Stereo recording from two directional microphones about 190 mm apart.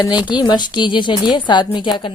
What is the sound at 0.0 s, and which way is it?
A woman's voice, 25° left (ahead or behind).